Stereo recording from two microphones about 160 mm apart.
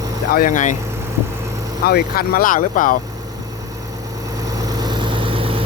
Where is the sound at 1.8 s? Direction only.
75° left (ahead or behind); by 3.0 s 55° left (ahead or behind).